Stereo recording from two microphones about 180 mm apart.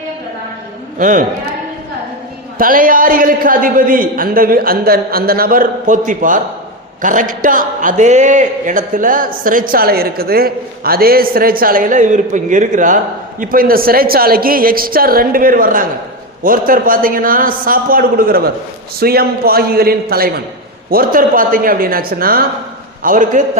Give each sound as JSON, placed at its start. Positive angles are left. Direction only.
{"t": 0.9, "sound": "a man's voice", "side_deg": -50}
{"t": 2.6, "sound": "a man's voice", "side_deg": -50}